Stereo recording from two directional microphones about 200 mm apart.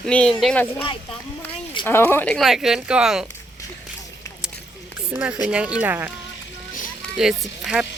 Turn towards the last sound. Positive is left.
turn(degrees=-5)  # may be behind; listen again after turning